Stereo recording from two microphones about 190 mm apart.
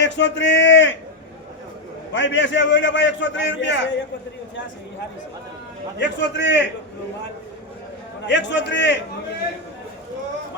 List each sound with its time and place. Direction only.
0.0 s a man's voice: 70° left (ahead or behind)
2.1 s a man's voice: 75° left (ahead or behind)
6.0 s a man's voice: 65° left (ahead or behind)
8.3 s a man's voice: 70° left (ahead or behind)